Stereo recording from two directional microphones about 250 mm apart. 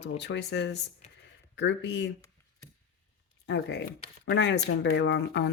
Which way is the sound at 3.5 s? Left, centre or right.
Left.